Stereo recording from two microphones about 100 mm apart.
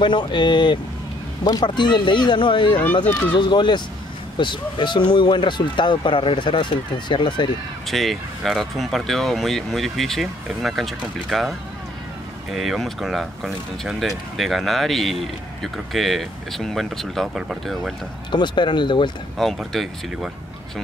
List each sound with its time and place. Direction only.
0.0 s speech: 50° left (ahead or behind)
2.7 s speech: 20° left (ahead or behind)
3.3 s speech: 50° left (ahead or behind)
7.8 s speech: centre (ahead or behind)
18.3 s speech: 50° left (ahead or behind)
19.3 s speech: centre (ahead or behind)